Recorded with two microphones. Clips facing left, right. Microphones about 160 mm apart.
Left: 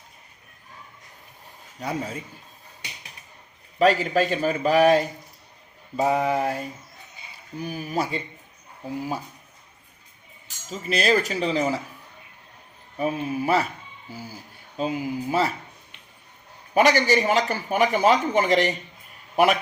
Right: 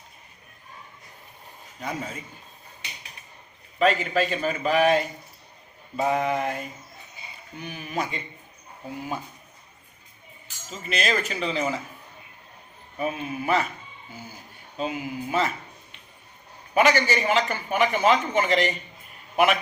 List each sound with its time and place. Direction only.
1.8 s speech: 35° left (ahead or behind)
3.8 s speech: 35° left (ahead or behind)
10.7 s speech: 35° left (ahead or behind)
13.0 s speech: 35° left (ahead or behind)
14.8 s speech: 35° left (ahead or behind)
16.7 s speech: 40° left (ahead or behind)